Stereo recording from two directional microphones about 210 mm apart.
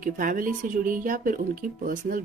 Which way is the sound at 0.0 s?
40° right (ahead or behind).